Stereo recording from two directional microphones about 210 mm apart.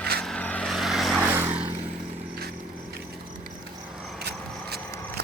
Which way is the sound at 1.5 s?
25° right (ahead or behind).